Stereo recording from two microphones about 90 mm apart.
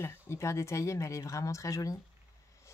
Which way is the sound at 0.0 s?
30° left (ahead or behind).